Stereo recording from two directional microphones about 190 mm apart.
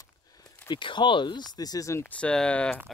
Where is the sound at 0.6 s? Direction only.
25° left (ahead or behind).